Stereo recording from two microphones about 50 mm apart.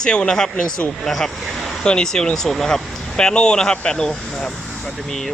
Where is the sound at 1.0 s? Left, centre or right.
Centre.